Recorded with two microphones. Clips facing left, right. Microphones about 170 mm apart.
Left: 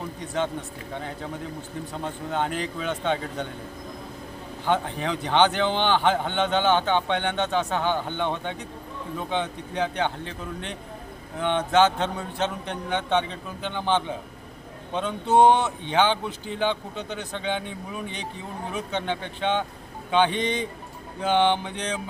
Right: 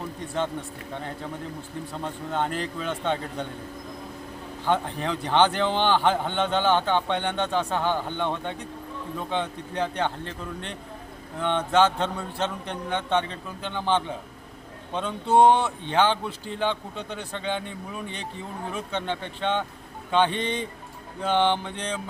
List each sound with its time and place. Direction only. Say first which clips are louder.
2.0 s speech: even; centre (ahead or behind)
4.6 s speech: even; centre (ahead or behind)
11.3 s speech: left 1 dB; 5° left (ahead or behind)
20.4 s speech: left 2 dB; 30° right (ahead or behind)
21.2 s speech: left 1 dB; 5° left (ahead or behind)